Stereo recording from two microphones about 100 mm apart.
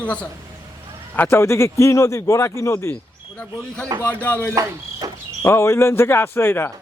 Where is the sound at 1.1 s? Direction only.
25° left (ahead or behind).